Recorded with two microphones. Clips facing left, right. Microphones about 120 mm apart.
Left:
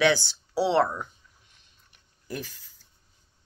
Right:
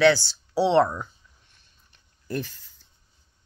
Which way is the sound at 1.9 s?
10° left (ahead or behind).